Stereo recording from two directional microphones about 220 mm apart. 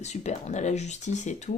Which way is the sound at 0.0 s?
30° left (ahead or behind).